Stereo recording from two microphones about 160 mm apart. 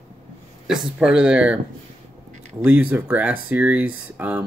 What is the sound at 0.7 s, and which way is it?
Speech, 5° right (ahead or behind).